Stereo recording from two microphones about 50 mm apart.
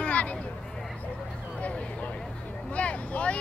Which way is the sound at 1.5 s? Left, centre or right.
Left.